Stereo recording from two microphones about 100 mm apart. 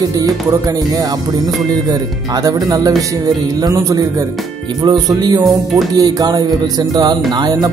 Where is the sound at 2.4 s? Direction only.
40° right (ahead or behind).